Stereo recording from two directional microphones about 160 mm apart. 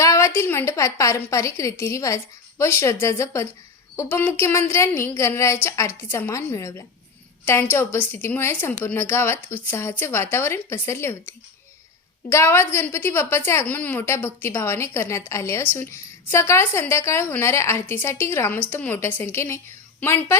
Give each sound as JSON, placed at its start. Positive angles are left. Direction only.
{"t": 0.0, "sound": "a woman's voice", "side_deg": 20}
{"t": 12.3, "sound": "a woman's voice", "side_deg": 15}